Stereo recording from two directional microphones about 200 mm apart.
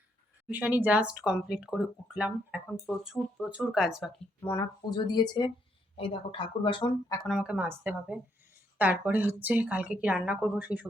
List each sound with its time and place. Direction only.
0.4 s speech: 10° right (ahead or behind)
4.4 s speech: 15° left (ahead or behind)
7.3 s a woman's voice: 5° right (ahead or behind)